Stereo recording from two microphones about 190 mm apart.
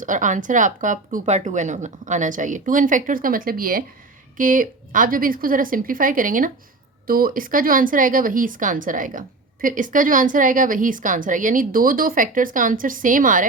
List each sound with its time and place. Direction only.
0.0 s speech: 45° right (ahead or behind)